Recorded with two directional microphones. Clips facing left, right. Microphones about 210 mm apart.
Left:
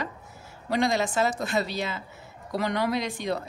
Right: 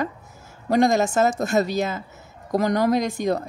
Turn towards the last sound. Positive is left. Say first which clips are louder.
# right 6 dB
turn(degrees=-45)  # may be behind; listen again after turning